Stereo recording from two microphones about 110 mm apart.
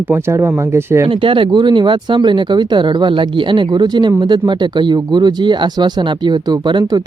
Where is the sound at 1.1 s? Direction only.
50° right (ahead or behind).